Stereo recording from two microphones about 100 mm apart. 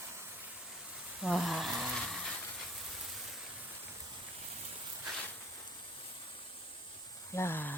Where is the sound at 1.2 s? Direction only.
Centre (ahead or behind).